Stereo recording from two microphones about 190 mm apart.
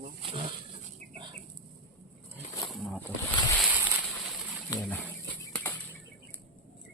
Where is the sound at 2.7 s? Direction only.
5° left (ahead or behind).